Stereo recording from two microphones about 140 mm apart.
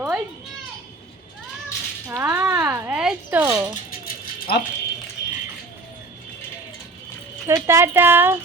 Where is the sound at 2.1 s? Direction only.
20° right (ahead or behind).